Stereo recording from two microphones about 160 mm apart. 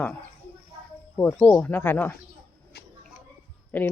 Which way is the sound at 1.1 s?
10° left (ahead or behind).